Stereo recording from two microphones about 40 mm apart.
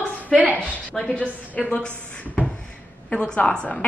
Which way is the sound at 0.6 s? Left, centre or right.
Left.